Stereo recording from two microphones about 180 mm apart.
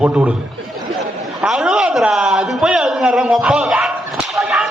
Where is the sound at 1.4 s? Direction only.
5° right (ahead or behind).